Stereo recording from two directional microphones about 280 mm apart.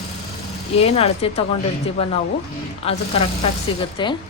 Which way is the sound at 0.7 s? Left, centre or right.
Left.